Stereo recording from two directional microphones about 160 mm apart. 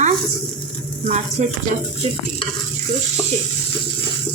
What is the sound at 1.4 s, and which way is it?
Speech, 45° right (ahead or behind).